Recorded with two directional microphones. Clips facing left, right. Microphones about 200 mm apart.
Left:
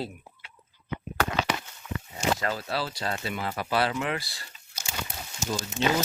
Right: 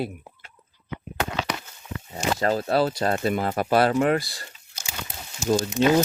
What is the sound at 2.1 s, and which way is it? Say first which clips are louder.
Speech: right 5 dB; 35° right (ahead or behind).